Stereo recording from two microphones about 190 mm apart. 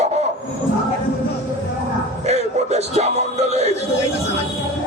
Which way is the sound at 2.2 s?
35° right (ahead or behind).